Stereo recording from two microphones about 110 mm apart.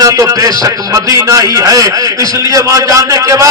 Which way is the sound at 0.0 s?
35° right (ahead or behind).